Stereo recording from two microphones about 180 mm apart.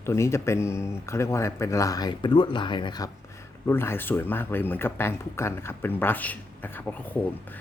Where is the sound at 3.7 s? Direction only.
15° left (ahead or behind).